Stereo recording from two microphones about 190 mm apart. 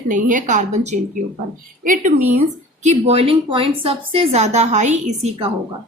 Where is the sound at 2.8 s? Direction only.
35° right (ahead or behind).